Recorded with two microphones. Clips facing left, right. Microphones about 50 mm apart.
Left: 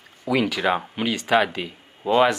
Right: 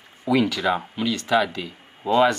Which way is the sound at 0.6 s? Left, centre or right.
Left.